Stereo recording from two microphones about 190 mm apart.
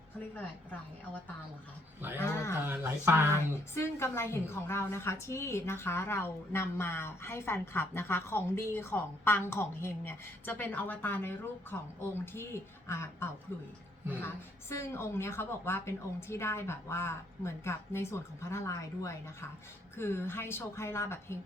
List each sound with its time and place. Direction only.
0.3 s a woman's voice: 10° left (ahead or behind)
2.6 s speech: 10° right (ahead or behind)
3.8 s a woman's voice: 15° left (ahead or behind)
14.7 s a woman's voice: 15° left (ahead or behind)